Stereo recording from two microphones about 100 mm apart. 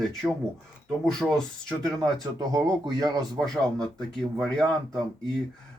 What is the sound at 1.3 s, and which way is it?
Speech, 5° left (ahead or behind).